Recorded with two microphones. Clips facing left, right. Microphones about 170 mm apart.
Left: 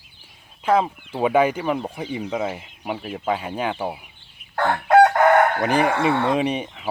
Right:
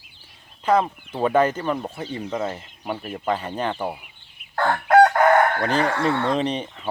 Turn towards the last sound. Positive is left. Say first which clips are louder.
# left 2 dB
turn(degrees=10)  # may be behind; listen again after turning